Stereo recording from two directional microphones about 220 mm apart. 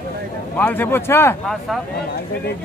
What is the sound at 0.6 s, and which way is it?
Speech, 10° left (ahead or behind).